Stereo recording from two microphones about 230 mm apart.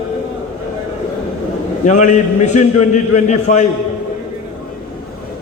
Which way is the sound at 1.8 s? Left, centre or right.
Left.